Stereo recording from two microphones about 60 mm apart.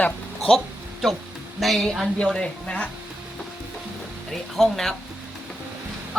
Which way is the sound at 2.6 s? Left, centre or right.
Centre.